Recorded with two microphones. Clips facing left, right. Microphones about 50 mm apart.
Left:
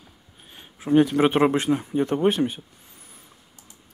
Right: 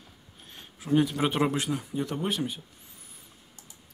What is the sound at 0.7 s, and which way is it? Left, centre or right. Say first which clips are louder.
A man's voice: left 7 dB; left.